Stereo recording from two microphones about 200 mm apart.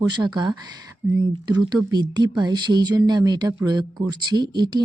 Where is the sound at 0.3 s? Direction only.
20° right (ahead or behind).